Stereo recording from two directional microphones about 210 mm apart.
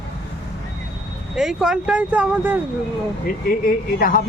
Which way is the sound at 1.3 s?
5° right (ahead or behind).